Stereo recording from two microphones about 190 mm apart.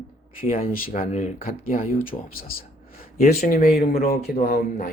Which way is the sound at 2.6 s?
50° left (ahead or behind).